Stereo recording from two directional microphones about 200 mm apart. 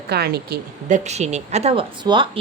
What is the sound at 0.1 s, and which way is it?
A woman's voice, 50° right (ahead or behind).